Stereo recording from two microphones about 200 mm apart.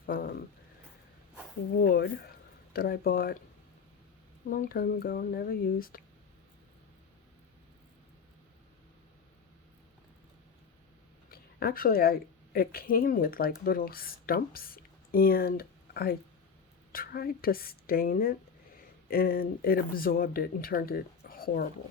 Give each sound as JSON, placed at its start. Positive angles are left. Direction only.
{"t": 0.0, "sound": "speech", "side_deg": 50}
{"t": 1.8, "sound": "a woman's voice", "side_deg": 50}
{"t": 4.4, "sound": "a woman's voice", "side_deg": 45}
{"t": 11.3, "sound": "a sound", "side_deg": 50}
{"t": 12.5, "sound": "a woman's voice", "side_deg": 45}